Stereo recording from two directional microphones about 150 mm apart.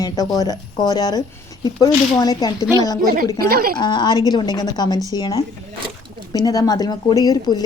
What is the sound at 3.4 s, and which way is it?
Speech, 85° right.